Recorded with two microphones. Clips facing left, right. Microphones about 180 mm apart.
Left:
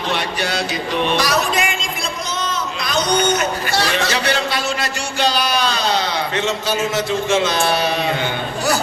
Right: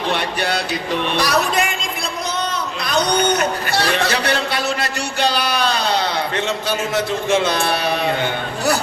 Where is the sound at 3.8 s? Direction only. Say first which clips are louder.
Right 1 dB; 60° right (ahead or behind).